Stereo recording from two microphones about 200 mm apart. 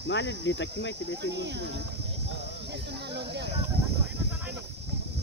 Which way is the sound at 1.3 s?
60° right (ahead or behind).